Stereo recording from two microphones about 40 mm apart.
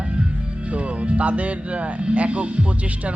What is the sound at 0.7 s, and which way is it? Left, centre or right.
Speech, right.